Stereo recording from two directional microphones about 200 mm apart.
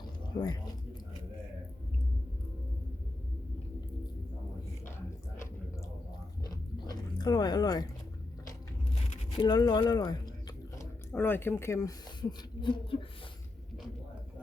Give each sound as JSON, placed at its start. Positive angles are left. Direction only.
{"t": 0.3, "sound": "speech", "side_deg": 20}
{"t": 6.4, "sound": "biting", "side_deg": 20}
{"t": 9.3, "sound": "a sound", "side_deg": 20}
{"t": 11.1, "sound": "speech", "side_deg": 10}